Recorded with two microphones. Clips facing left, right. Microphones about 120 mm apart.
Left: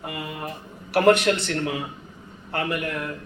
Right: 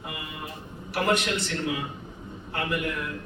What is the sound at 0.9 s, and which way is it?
Speech, 60° left (ahead or behind).